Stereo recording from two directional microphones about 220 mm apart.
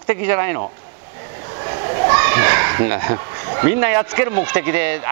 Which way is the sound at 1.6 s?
20° right (ahead or behind).